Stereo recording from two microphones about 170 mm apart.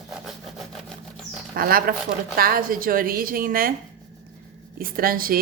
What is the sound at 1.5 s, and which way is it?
A woman's voice, 60° right (ahead or behind).